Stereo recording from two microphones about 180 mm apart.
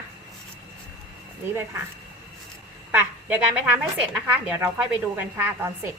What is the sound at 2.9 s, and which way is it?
A woman's voice, 10° right (ahead or behind).